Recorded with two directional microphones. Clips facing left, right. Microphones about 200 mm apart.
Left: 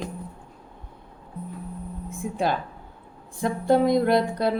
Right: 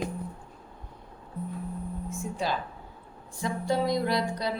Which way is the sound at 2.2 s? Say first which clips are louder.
Left 6 dB; 55° left (ahead or behind).